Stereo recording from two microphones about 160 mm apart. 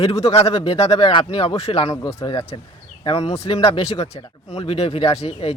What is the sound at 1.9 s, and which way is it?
Speech, 30° left (ahead or behind).